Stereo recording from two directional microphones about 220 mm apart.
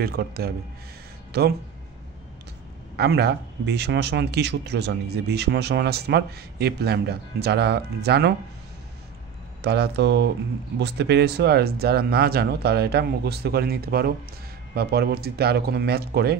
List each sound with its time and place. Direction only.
0.0 s speech: 45° right (ahead or behind)
3.0 s speech: 45° right (ahead or behind)
9.6 s speech: 50° right (ahead or behind)